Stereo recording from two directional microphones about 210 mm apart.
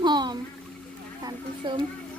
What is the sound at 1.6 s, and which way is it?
Speech, 20° right (ahead or behind).